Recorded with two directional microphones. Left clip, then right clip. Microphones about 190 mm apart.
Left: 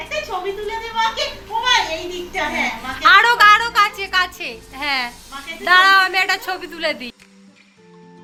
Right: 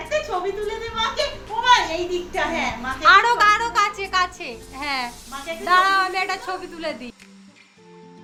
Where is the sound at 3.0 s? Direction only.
Centre (ahead or behind).